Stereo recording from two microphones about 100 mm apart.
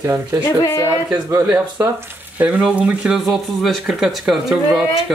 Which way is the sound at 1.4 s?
15° right (ahead or behind).